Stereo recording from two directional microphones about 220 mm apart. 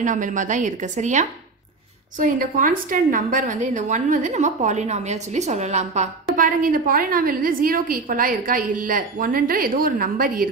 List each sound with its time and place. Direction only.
0.0 s a woman's voice: 35° right (ahead or behind)